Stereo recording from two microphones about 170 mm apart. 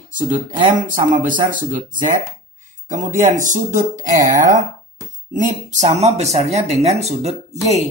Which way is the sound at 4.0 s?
20° right (ahead or behind).